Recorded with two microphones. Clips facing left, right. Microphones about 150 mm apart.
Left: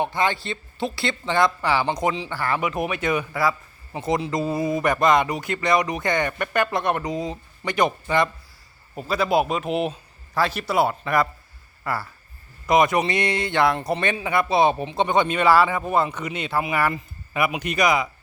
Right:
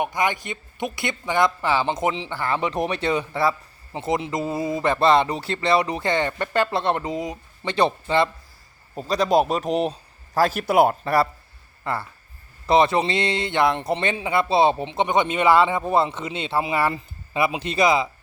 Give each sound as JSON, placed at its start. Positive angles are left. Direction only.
{"t": 0.2, "sound": "speech", "side_deg": -15}
{"t": 2.8, "sound": "speech", "side_deg": -30}
{"t": 9.0, "sound": "a man's voice", "side_deg": -35}
{"t": 11.0, "sound": "a man's voice", "side_deg": -35}